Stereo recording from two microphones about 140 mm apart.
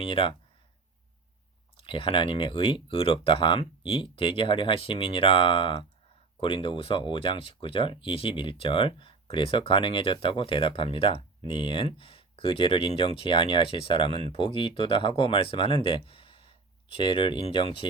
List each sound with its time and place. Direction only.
0.0 s speech: 40° left (ahead or behind)
1.8 s speech: 40° left (ahead or behind)